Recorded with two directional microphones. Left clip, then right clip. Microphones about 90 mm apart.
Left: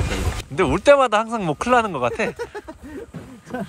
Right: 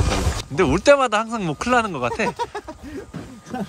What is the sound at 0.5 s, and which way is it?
Speech, 30° right (ahead or behind).